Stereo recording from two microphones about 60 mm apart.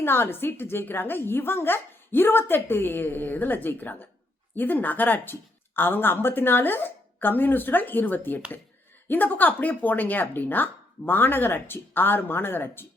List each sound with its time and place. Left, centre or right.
0.0 s speech: left